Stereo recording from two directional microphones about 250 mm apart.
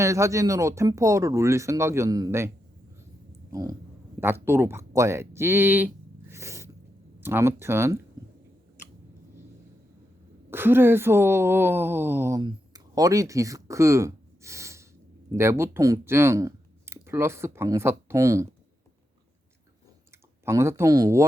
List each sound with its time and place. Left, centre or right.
0.0 s speech: centre
3.5 s speech: centre
10.5 s speech: centre
20.4 s speech: centre